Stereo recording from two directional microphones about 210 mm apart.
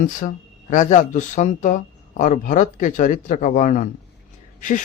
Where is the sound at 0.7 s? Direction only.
35° left (ahead or behind).